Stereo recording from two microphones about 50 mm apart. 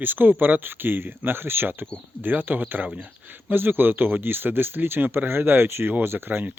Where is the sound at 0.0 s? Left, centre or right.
Right.